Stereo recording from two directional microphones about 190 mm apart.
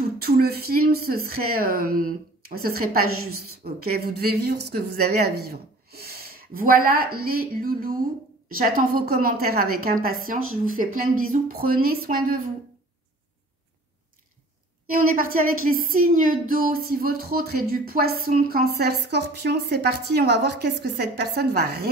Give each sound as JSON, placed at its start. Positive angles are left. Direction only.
{"t": 0.2, "sound": "a woman's voice", "side_deg": -55}
{"t": 14.9, "sound": "a woman's voice", "side_deg": -50}